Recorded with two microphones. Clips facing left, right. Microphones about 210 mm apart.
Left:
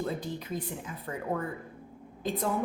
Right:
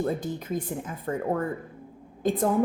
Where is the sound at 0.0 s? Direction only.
45° right (ahead or behind).